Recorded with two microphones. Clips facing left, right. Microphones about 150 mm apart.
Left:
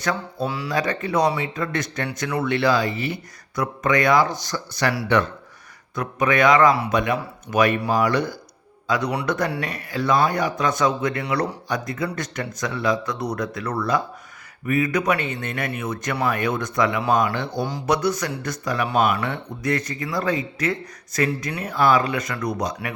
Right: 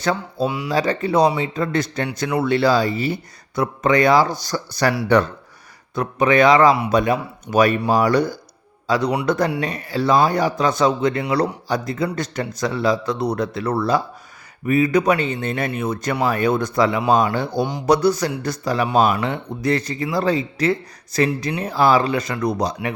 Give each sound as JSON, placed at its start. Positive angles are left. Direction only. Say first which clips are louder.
{"t": 0.0, "sound": "speech", "louder": "right 4 dB", "side_deg": -30}
{"t": 0.4, "sound": "speech", "louder": "right 4 dB", "side_deg": -15}
{"t": 0.7, "sound": "speech", "louder": "right 4 dB", "side_deg": -30}